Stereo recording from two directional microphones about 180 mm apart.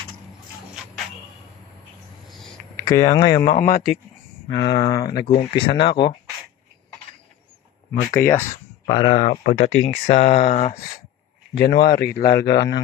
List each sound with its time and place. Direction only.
2.8 s speech: 20° left (ahead or behind)
3.4 s speech: 40° left (ahead or behind)
4.6 s speech: 20° left (ahead or behind)
8.1 s speech: 10° left (ahead or behind)
8.9 s speech: 30° left (ahead or behind)
9.3 s speech: 50° left (ahead or behind)
11.5 s speech: 70° left (ahead or behind)
12.5 s speech: 20° left (ahead or behind)